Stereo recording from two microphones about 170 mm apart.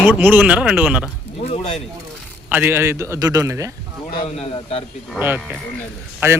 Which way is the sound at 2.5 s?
10° right (ahead or behind).